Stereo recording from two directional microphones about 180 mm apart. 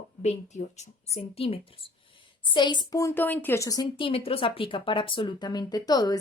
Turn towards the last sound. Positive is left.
turn(degrees=20)  # may be behind; listen again after turning